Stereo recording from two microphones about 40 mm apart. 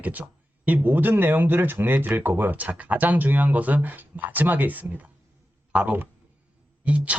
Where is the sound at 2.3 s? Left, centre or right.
Right.